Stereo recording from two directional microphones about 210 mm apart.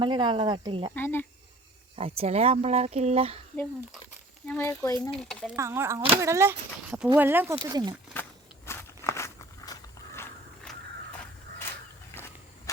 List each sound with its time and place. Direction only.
0.0 s speech: 20° right (ahead or behind)
0.9 s speech: 10° left (ahead or behind)
2.0 s speech: 25° right (ahead or behind)
4.4 s speech: 10° left (ahead or behind)
5.1 s speech: 5° left (ahead or behind)
5.5 s speech: 10° right (ahead or behind)
8.1 s walk: 10° left (ahead or behind)
12.7 s cricket: 15° left (ahead or behind)